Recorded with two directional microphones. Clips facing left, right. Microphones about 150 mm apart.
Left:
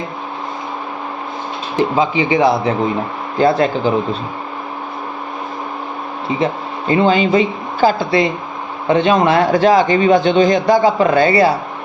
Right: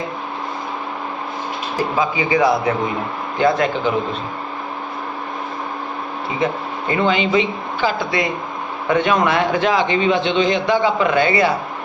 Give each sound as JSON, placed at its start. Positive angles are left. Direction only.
{"t": 2.0, "sound": "a man's voice", "side_deg": 25}
{"t": 3.3, "sound": "speech", "side_deg": 35}
{"t": 6.4, "sound": "speech", "side_deg": 30}